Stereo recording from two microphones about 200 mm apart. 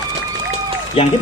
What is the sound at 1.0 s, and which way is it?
Speech, 30° left (ahead or behind).